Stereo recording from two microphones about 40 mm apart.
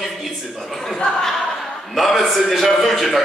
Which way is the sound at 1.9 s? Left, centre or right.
Centre.